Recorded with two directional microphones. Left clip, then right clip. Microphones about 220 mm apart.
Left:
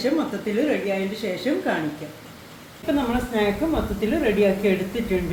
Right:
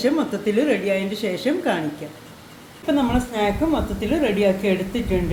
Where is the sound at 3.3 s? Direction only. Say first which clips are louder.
Right 1 dB; 30° right (ahead or behind).